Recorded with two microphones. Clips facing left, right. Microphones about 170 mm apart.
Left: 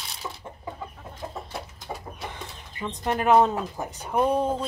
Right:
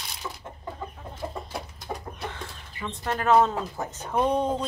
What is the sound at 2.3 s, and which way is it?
Speech, 15° left (ahead or behind).